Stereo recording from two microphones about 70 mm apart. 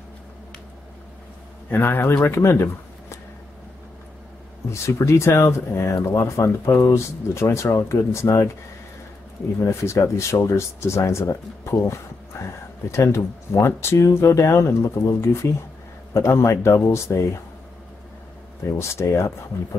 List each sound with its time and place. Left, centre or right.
1.7 s speech: left
4.6 s speech: left
9.6 s speech: left
18.6 s speech: left